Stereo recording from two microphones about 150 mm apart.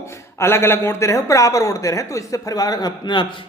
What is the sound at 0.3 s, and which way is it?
Speech, 15° left (ahead or behind).